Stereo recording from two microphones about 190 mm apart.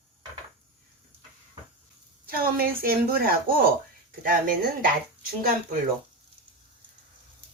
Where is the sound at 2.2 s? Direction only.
50° right (ahead or behind).